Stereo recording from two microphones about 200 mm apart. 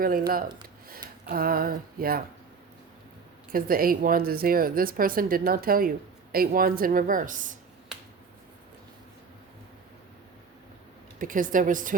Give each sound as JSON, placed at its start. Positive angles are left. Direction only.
{"t": 0.0, "sound": "speech", "side_deg": -45}
{"t": 3.5, "sound": "speech", "side_deg": -45}
{"t": 7.9, "sound": "finger snapping", "side_deg": -5}
{"t": 11.2, "sound": "a woman's voice", "side_deg": -40}